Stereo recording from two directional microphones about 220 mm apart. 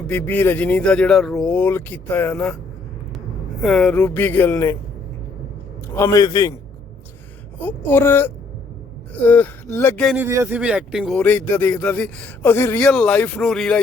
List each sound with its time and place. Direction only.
0.1 s speech: 10° left (ahead or behind)
3.6 s speech: centre (ahead or behind)
6.0 s speech: 15° left (ahead or behind)
7.6 s speech: 10° left (ahead or behind)
10.2 s speech: 10° right (ahead or behind)